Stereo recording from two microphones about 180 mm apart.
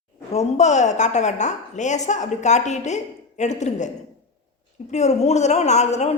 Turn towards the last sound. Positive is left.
turn(degrees=40)  # may be behind; listen again after turning